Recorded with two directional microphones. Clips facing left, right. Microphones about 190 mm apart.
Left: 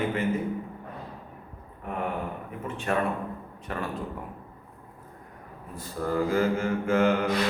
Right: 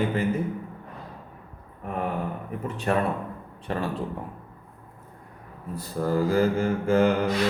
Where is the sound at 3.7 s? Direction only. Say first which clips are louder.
Right 4 dB; 30° right (ahead or behind).